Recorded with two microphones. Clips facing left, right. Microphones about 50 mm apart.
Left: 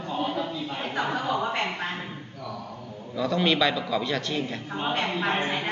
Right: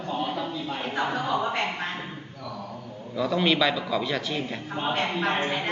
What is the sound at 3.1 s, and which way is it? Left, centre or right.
A man's voice, centre.